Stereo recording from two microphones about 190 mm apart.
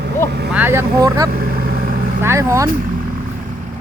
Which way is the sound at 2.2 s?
15° right (ahead or behind).